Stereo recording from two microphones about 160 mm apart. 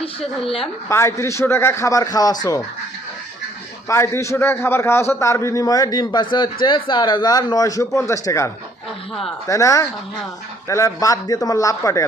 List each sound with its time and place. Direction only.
0.9 s a man's voice: 15° left (ahead or behind)
3.8 s a man's voice: 15° left (ahead or behind)